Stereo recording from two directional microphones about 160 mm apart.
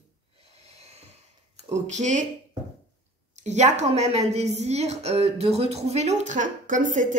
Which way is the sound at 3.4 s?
45° right (ahead or behind).